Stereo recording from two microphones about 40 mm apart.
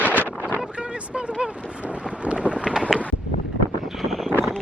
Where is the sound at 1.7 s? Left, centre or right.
Right.